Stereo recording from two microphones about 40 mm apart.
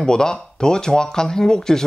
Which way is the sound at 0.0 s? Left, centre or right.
Centre.